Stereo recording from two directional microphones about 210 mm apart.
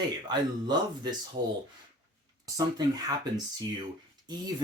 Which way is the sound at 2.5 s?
20° right (ahead or behind).